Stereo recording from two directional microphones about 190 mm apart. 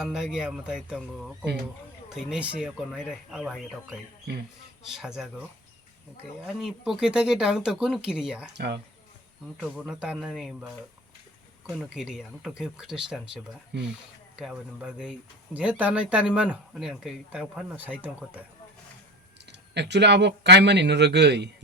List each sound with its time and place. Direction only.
0.0 s speech: 5° right (ahead or behind)
4.3 s speech: 60° right (ahead or behind)
4.9 s speech: 5° right (ahead or behind)
6.6 s speech: 5° right (ahead or behind)
8.5 s speech: 60° right (ahead or behind)
9.6 s speech: centre (ahead or behind)
19.5 s speech: 65° right (ahead or behind)